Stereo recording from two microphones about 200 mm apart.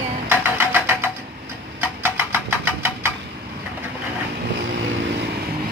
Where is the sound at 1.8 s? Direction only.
10° right (ahead or behind).